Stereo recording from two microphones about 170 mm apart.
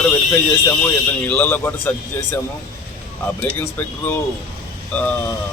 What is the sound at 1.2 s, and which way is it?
Speech, 10° left (ahead or behind).